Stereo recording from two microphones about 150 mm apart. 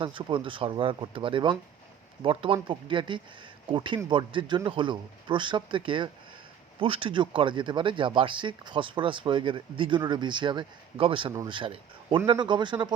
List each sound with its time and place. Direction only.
0.0 s speech: 35° right (ahead or behind)